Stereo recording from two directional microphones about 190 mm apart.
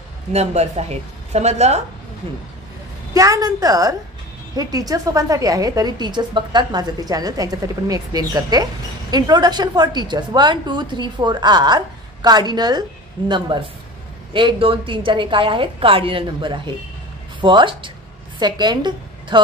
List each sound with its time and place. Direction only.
0.3 s a woman's voice: 35° right (ahead or behind)
3.2 s a woman's voice: 20° right (ahead or behind)